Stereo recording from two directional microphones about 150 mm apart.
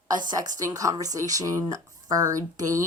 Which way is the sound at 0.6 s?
25° right (ahead or behind).